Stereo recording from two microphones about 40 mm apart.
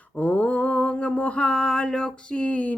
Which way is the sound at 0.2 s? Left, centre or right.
Left.